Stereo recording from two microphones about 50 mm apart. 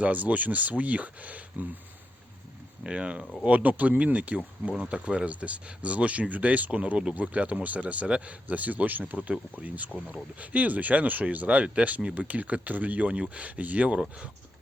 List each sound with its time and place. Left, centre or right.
0.0 s speech: right
2.8 s speech: right